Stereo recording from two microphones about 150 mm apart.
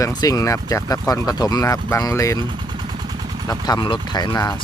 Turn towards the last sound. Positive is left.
turn(degrees=25)  # may be behind; listen again after turning